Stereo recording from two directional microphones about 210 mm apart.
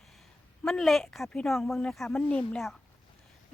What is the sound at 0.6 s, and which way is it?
Speech, centre (ahead or behind).